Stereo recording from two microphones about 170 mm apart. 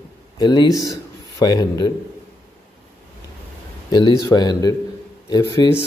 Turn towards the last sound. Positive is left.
turn(degrees=25)  # may be behind; listen again after turning